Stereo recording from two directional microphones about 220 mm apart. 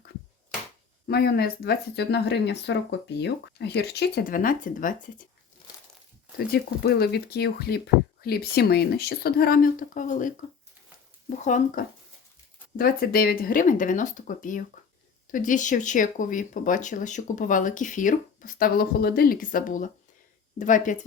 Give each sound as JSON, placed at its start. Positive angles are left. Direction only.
{"t": 1.0, "sound": "speech", "side_deg": 45}
{"t": 6.5, "sound": "speech", "side_deg": 45}
{"t": 11.4, "sound": "speech", "side_deg": 40}